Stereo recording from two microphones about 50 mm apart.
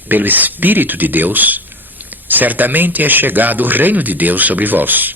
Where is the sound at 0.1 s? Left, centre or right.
Right.